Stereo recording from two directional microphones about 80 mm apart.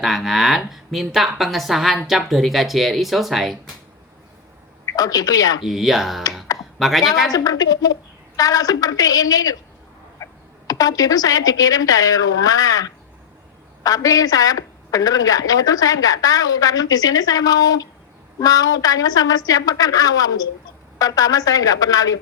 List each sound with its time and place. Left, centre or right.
0.0 s speech: centre
4.9 s a woman's voice: left
5.6 s a woman's voice: centre
7.3 s a woman's voice: left
10.2 s music: left
10.7 s a woman's voice: left